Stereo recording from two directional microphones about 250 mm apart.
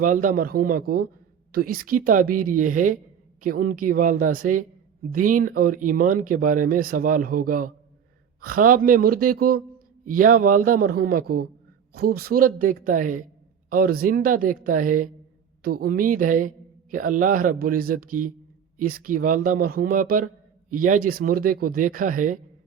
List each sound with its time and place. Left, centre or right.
0.0 s a man's voice: right